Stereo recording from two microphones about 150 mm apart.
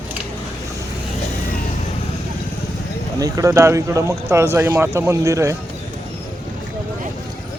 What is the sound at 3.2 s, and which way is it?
Speech, 25° right (ahead or behind).